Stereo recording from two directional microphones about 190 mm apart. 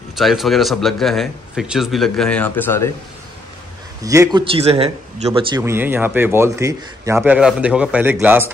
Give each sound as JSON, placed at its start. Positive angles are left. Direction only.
{"t": 0.1, "sound": "speech", "side_deg": 0}
{"t": 4.0, "sound": "speech", "side_deg": -15}
{"t": 5.6, "sound": "speech", "side_deg": -10}
{"t": 7.2, "sound": "speech", "side_deg": -5}